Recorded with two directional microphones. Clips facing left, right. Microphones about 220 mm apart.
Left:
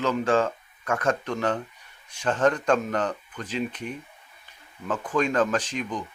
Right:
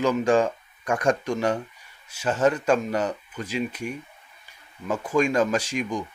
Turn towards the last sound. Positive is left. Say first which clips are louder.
# right 2 dB
turn(degrees=-10)  # may be behind; listen again after turning